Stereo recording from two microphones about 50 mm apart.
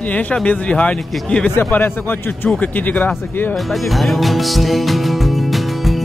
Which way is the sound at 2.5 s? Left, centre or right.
Left.